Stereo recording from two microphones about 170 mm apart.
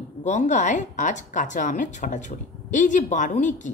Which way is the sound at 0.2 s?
45° left (ahead or behind).